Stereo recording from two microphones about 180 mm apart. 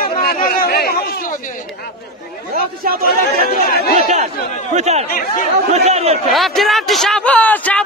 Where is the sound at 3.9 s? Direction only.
40° right (ahead or behind).